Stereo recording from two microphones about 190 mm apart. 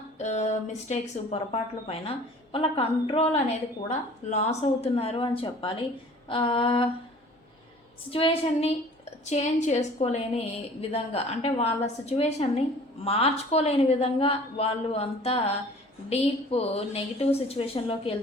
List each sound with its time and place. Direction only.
0.2 s a woman's voice: 40° left (ahead or behind)
8.1 s a woman's voice: 30° left (ahead or behind)